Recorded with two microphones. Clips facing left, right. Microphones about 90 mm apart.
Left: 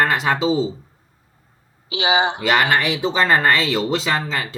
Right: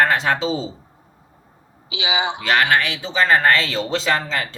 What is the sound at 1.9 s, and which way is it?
Speech, 40° left (ahead or behind).